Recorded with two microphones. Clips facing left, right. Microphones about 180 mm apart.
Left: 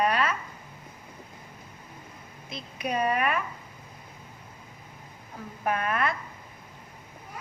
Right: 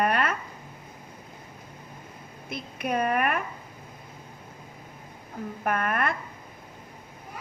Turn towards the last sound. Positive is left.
turn(degrees=-55)  # may be behind; listen again after turning